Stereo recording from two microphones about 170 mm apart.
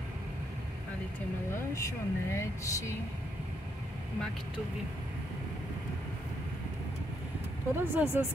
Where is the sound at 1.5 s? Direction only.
15° left (ahead or behind).